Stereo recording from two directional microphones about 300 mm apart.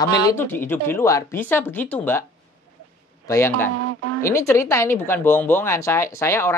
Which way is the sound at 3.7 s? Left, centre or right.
Right.